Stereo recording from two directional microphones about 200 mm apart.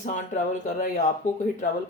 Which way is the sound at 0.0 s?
40° left (ahead or behind).